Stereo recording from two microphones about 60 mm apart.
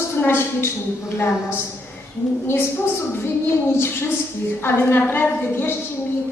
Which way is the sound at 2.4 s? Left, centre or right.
Left.